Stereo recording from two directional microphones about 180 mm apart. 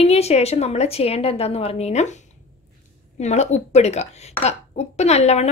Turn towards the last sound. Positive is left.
turn(degrees=35)  # may be behind; listen again after turning